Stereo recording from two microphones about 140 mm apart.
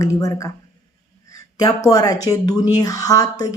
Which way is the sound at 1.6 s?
25° left (ahead or behind).